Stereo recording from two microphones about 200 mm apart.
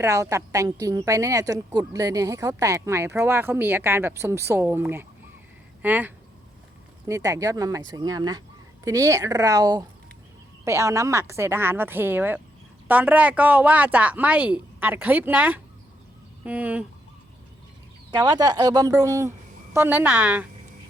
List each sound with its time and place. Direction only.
0.0 s a woman's voice: 15° right (ahead or behind)
18.2 s a woman's voice: 20° right (ahead or behind)